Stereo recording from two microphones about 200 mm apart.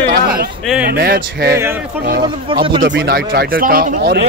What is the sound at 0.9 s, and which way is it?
Speech, 50° right (ahead or behind).